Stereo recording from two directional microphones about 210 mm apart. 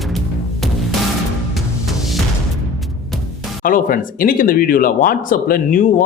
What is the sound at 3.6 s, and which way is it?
Speech, 40° left (ahead or behind).